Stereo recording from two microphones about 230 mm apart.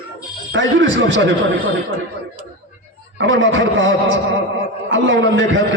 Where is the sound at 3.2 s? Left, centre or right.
Right.